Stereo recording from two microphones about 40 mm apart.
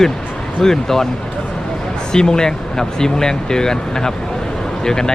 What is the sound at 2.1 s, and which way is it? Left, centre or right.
Speech, centre.